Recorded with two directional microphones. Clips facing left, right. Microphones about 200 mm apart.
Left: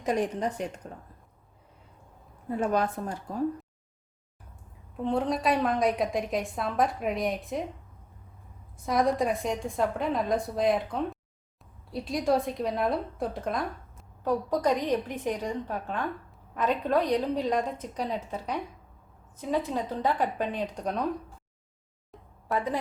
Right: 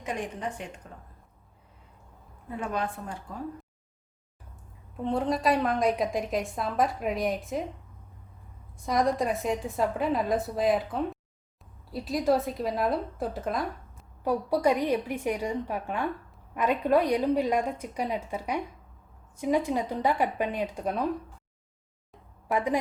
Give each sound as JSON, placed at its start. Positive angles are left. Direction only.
{"t": 0.0, "sound": "a woman's voice", "side_deg": 40}
{"t": 2.5, "sound": "a woman's voice", "side_deg": 40}
{"t": 4.9, "sound": "a woman's voice", "side_deg": 0}
{"t": 8.8, "sound": "a woman's voice", "side_deg": 0}
{"t": 22.5, "sound": "a woman's voice", "side_deg": -15}